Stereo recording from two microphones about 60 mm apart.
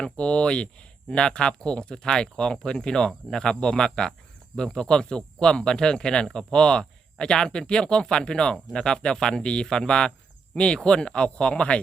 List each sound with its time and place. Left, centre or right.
0.0 s speech: centre